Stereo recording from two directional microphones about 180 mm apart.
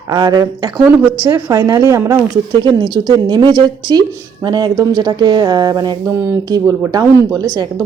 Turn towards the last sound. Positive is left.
turn(degrees=-20)  # may be behind; listen again after turning